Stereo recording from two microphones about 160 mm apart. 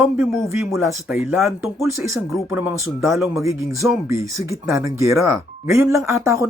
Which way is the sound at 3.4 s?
20° right (ahead or behind).